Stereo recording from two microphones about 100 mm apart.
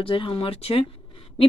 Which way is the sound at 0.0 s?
60° left (ahead or behind).